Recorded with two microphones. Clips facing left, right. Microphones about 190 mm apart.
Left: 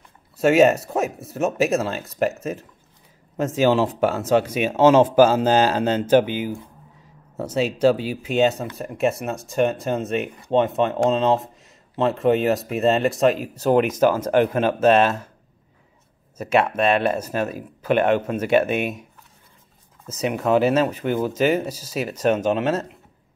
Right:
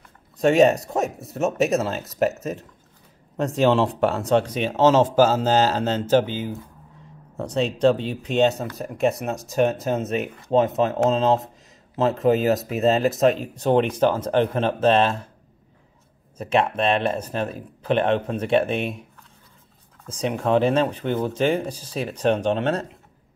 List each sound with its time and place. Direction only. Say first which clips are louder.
0.4 s speech: left 1 dB; centre (ahead or behind)
16.3 s speech: left 2 dB; 5° left (ahead or behind)
20.1 s speech: left 1 dB; 5° left (ahead or behind)